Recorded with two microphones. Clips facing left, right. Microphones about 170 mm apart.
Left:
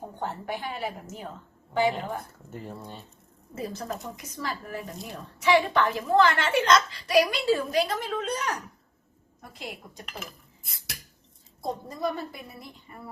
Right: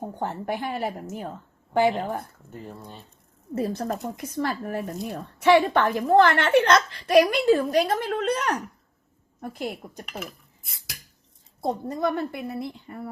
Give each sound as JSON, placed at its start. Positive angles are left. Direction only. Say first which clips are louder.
{"t": 0.2, "sound": "a woman's voice", "louder": "right 3 dB", "side_deg": -45}
{"t": 2.5, "sound": "speech", "louder": "left 3 dB", "side_deg": 0}
{"t": 3.5, "sound": "a woman's voice", "louder": "right 7 dB", "side_deg": -60}
{"t": 8.0, "sound": "a woman's voice", "louder": "right 5 dB", "side_deg": -65}
{"t": 10.6, "sound": "a sound", "louder": "left 4 dB", "side_deg": 0}
{"t": 11.6, "sound": "a woman's voice", "louder": "right 5 dB", "side_deg": -60}